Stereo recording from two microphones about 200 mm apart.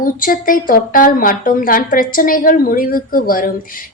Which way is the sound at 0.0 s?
45° left (ahead or behind).